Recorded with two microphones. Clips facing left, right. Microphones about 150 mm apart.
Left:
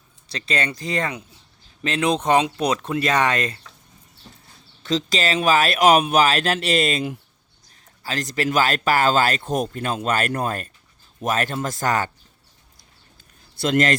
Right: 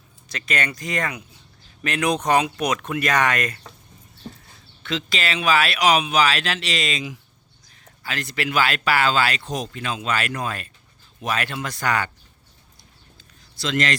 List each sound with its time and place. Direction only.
0.3 s speech: 30° left (ahead or behind)
4.8 s speech: 40° left (ahead or behind)
8.0 s speech: 40° left (ahead or behind)
13.6 s speech: 50° left (ahead or behind)